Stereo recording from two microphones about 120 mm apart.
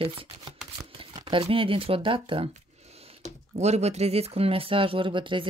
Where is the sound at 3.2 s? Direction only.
65° right (ahead or behind); by 5.5 s 45° right (ahead or behind).